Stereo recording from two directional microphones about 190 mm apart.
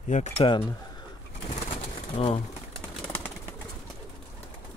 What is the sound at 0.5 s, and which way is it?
Speech, 25° left (ahead or behind).